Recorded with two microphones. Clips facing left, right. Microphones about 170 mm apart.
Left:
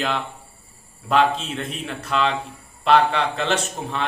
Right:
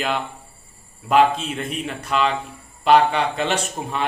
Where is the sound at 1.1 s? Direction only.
5° right (ahead or behind).